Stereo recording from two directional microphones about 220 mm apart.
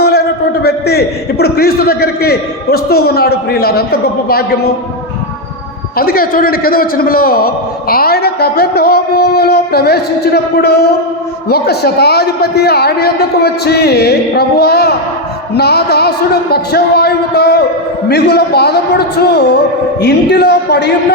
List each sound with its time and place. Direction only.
0.0 s a man's voice: 45° left (ahead or behind)
6.0 s a man's voice: 40° left (ahead or behind)